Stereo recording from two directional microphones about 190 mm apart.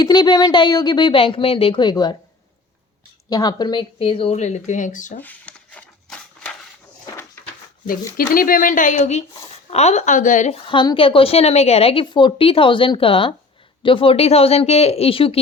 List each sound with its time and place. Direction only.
0.0 s a woman's voice: 25° left (ahead or behind)
3.2 s speech: 20° left (ahead or behind); by 5.2 s 40° left (ahead or behind)
5.2 s a sound: 5° left (ahead or behind)
8.1 s speech: 50° left (ahead or behind)
10.7 s a woman's voice: 25° left (ahead or behind)